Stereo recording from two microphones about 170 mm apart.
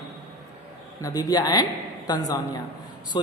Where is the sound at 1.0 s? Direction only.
20° left (ahead or behind).